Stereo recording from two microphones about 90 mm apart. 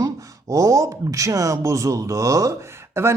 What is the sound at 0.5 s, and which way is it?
Speech, 40° right (ahead or behind).